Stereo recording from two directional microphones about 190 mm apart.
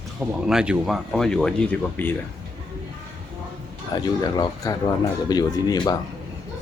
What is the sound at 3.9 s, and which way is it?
Speech, 20° left (ahead or behind).